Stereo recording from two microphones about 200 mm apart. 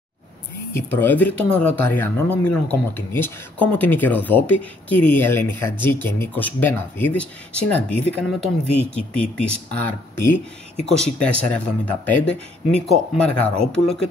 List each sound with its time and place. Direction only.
0.7 s speech: 10° left (ahead or behind)